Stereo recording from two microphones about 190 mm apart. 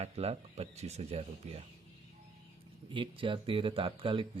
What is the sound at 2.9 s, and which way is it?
Speech, 25° right (ahead or behind).